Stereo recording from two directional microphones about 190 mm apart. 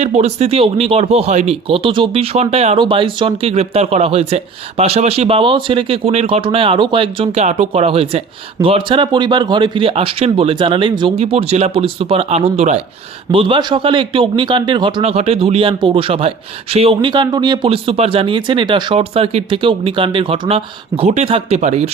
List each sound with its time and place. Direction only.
0.0 s speech: 35° right (ahead or behind)